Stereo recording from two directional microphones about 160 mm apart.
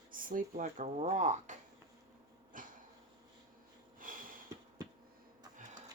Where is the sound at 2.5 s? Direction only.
55° right (ahead or behind).